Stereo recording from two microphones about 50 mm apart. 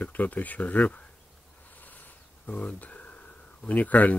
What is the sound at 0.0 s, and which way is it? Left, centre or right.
Speech, left.